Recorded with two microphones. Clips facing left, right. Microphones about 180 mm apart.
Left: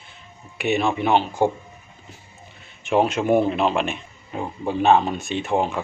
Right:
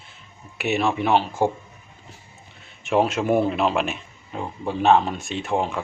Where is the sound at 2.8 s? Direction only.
Centre (ahead or behind).